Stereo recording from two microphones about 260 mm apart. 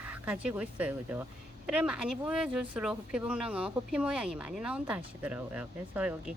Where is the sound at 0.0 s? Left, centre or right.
Centre.